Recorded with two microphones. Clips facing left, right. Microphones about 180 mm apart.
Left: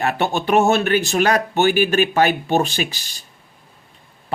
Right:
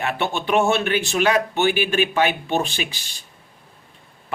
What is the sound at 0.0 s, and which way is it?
Speech, 40° left (ahead or behind).